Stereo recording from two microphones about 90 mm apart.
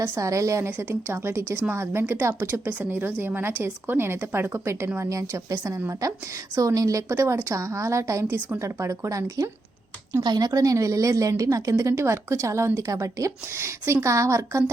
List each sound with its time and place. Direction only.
0.1 s a woman's voice: 35° right (ahead or behind)
10.2 s a woman's voice: 50° right (ahead or behind)